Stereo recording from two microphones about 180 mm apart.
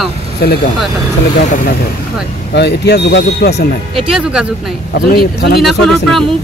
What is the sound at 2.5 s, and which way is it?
Speech, 70° left (ahead or behind).